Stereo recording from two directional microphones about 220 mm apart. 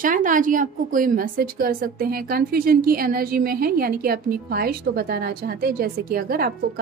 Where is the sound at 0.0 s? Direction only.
35° right (ahead or behind).